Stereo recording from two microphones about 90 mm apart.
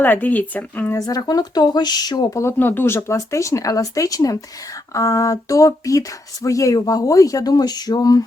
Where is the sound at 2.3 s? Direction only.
30° left (ahead or behind).